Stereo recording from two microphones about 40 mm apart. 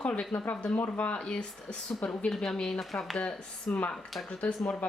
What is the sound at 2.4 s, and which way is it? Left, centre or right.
Speech, centre.